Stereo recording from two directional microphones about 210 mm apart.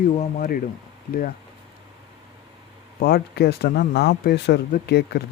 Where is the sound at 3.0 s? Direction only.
45° left (ahead or behind).